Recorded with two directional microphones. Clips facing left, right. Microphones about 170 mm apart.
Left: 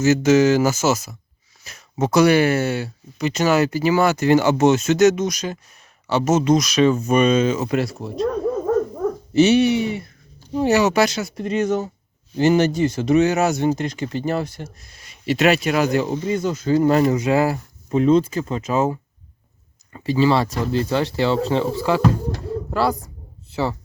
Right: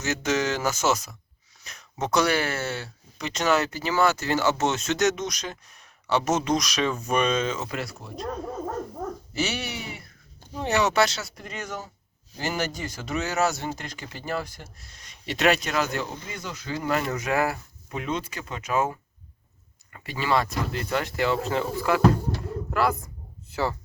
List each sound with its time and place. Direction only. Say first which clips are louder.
0.0 s speech: left 11 dB; 5° left (ahead or behind)
7.7 s speech: left 11 dB; 25° left (ahead or behind)
9.3 s speech: left 17 dB; 20° left (ahead or behind)
10.6 s speech: left 6 dB; 10° left (ahead or behind)
14.9 s speech: left 10 dB; 5° left (ahead or behind)
16.4 s speech: left 13 dB; 45° left (ahead or behind)